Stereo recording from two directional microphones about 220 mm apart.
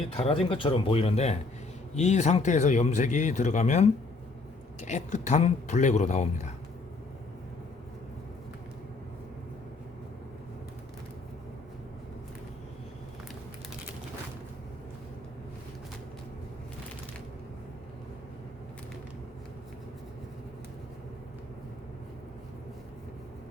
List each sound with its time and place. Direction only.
0.2 s speech: 25° left (ahead or behind)